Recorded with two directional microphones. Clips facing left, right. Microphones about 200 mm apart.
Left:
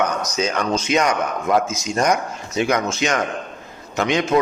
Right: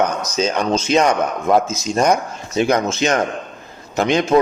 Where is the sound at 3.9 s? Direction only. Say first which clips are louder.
Right 3 dB; 35° right (ahead or behind).